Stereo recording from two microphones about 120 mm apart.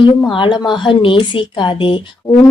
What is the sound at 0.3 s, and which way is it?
Speech, 40° left (ahead or behind).